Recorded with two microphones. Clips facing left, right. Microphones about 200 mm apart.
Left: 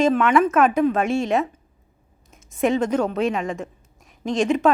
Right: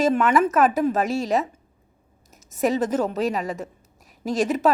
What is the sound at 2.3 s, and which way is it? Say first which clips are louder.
A woman's voice: left 2 dB; 5° right (ahead or behind).